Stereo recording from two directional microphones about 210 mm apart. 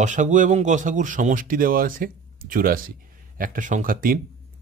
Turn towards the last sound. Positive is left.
turn(degrees=-40)  # may be behind; listen again after turning